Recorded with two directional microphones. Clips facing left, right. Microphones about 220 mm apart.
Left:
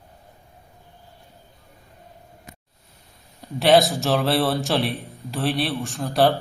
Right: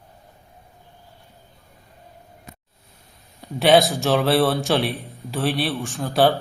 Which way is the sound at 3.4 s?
Centre (ahead or behind).